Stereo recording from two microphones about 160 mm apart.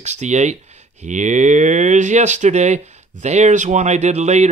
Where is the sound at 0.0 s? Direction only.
45° right (ahead or behind).